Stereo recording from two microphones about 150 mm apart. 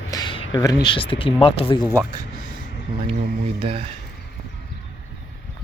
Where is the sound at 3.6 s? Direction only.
35° right (ahead or behind).